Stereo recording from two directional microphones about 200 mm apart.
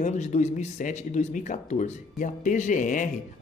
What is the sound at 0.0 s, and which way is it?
Speech, 35° left (ahead or behind).